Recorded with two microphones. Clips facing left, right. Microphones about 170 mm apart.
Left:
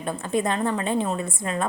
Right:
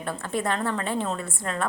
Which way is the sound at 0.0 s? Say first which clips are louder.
Left 3 dB; 20° left (ahead or behind).